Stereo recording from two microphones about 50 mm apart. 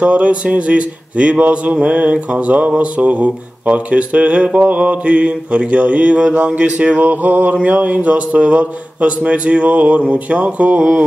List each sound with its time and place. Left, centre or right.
0.0 s speech: right